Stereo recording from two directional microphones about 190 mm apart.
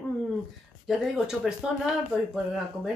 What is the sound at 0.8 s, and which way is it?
Speech, centre (ahead or behind).